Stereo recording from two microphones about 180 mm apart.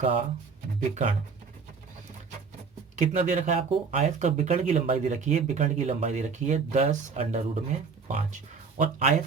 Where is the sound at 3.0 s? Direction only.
40° right (ahead or behind).